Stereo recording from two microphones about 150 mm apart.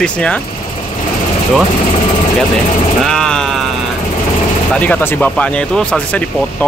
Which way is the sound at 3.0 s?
5° left (ahead or behind).